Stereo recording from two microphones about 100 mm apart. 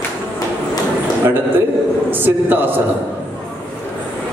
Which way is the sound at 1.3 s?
20° right (ahead or behind).